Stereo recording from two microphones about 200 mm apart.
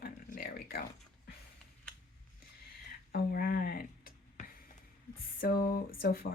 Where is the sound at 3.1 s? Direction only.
50° left (ahead or behind).